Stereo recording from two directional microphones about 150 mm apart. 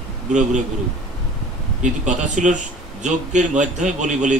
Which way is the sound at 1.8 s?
55° right (ahead or behind).